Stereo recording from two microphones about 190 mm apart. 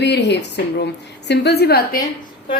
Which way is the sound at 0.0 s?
65° left (ahead or behind).